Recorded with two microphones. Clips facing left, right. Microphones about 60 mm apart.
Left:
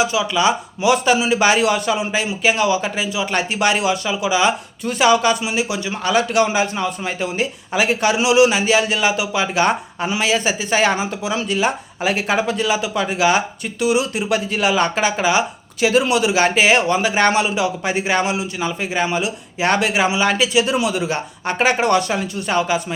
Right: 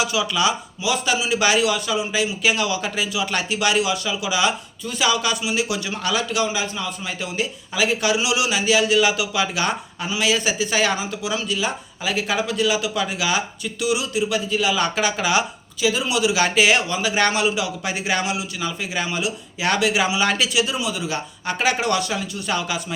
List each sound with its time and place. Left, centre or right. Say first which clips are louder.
0.0 s speech: left 4 dB; left
0.8 s a man's voice: left 8 dB; left
2.4 s a man's voice: left 8 dB; left
6.1 s a man's voice: left 8 dB; left
14.8 s speech: left 3 dB; left
15.8 s a man's voice: left 5 dB; left
20.1 s speech: left 3 dB; left
20.7 s speech: left 6 dB; left
21.4 s a man's voice: left 5 dB; left